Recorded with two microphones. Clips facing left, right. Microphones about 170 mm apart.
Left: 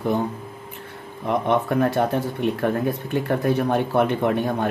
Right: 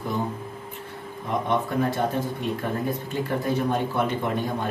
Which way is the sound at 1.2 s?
65° left (ahead or behind).